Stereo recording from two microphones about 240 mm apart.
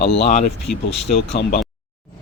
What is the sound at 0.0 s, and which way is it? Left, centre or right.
Speech, left.